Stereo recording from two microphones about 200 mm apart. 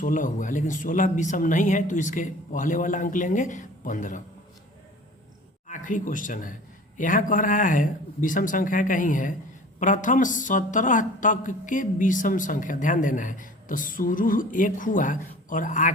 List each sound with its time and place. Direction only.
0.0 s a woman's voice: 40° left (ahead or behind)
5.6 s a woman's voice: 40° left (ahead or behind)